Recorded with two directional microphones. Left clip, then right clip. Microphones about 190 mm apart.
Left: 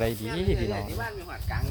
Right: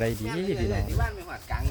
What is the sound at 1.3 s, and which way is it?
Snake, 60° right (ahead or behind).